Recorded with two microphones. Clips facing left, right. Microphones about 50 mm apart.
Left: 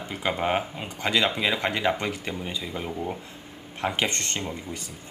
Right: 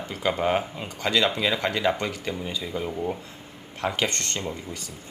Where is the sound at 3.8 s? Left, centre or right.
Left.